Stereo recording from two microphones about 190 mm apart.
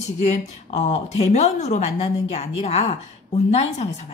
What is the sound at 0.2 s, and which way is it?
Speech, 35° left (ahead or behind).